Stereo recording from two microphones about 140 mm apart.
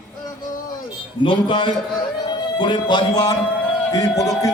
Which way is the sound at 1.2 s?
35° left (ahead or behind).